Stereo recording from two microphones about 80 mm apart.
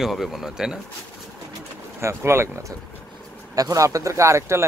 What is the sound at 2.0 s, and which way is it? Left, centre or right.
Speech, right.